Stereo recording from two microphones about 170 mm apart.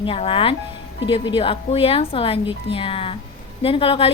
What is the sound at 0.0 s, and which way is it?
A woman's voice, 30° left (ahead or behind).